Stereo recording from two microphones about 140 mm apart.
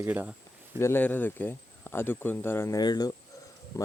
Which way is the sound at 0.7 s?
15° left (ahead or behind).